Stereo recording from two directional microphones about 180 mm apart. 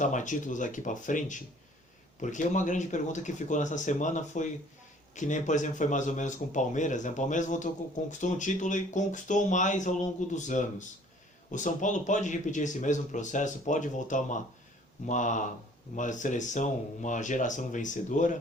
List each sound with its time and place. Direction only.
0.0 s speech: 45° left (ahead or behind)